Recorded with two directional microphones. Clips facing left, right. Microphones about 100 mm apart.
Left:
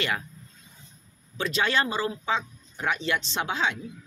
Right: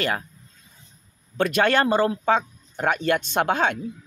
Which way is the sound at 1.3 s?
55° right (ahead or behind).